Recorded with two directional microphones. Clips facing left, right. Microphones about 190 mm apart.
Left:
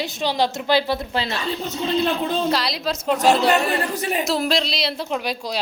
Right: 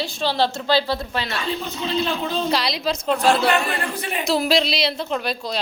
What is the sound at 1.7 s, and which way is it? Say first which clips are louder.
Speech: left 4 dB; 50° left (ahead or behind).